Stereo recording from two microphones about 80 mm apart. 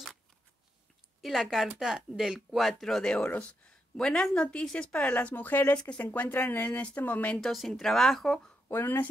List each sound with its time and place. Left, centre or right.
1.2 s speech: centre
6.0 s speech: left
7.3 s speech: centre
8.6 s speech: left